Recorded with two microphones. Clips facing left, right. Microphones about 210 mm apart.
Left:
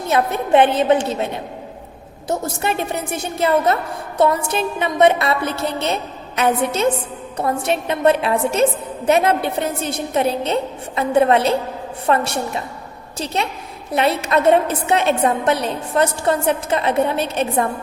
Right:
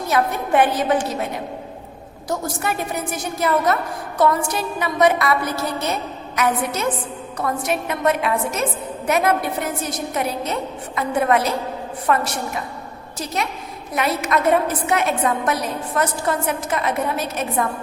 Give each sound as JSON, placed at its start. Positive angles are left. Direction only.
{"t": 0.1, "sound": "a woman's voice", "side_deg": 25}